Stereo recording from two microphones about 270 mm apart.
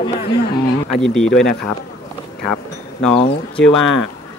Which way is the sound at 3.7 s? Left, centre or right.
Left.